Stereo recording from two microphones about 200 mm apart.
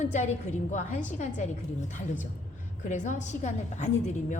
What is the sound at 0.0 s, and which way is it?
A woman's voice, 35° left (ahead or behind).